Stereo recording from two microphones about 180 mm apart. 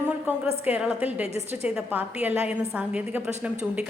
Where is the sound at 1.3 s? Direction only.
35° right (ahead or behind).